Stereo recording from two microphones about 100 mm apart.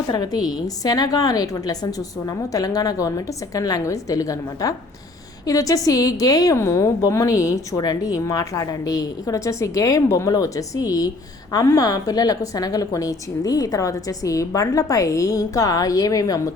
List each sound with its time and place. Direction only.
0.1 s a woman's voice: 40° left (ahead or behind)